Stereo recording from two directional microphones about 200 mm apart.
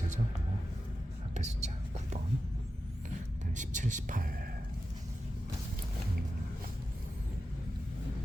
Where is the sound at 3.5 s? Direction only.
40° right (ahead or behind).